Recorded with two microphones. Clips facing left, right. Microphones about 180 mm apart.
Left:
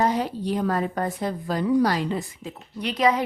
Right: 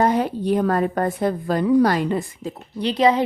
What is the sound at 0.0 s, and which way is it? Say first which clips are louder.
A woman's voice: right 4 dB; 55° right (ahead or behind).